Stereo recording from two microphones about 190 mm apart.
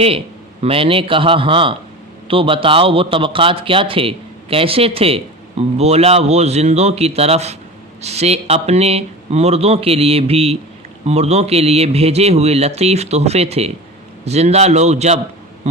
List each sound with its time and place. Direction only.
0.6 s a man's voice: 30° right (ahead or behind)